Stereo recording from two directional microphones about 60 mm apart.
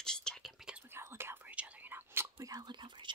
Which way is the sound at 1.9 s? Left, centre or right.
Right.